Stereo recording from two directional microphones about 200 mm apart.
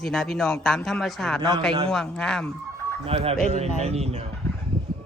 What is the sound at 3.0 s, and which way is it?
Speech, 30° right (ahead or behind).